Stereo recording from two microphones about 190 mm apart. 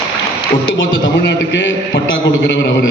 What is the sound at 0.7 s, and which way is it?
A man's voice, 75° left (ahead or behind).